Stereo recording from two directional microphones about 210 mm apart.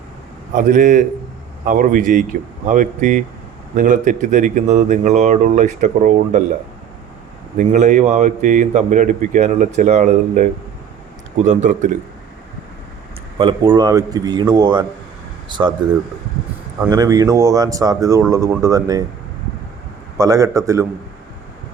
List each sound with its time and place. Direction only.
0.5 s speech: 40° right (ahead or behind)
7.5 s speech: 40° right (ahead or behind)
13.4 s speech: 20° right (ahead or behind)
16.8 s speech: 20° right (ahead or behind)
20.1 s speech: 15° right (ahead or behind)